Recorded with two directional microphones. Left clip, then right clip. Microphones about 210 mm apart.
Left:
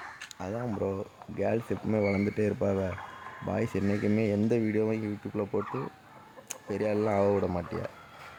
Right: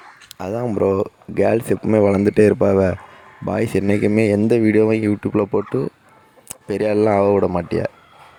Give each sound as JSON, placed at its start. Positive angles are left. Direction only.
{"t": 0.3, "sound": "speech", "side_deg": -45}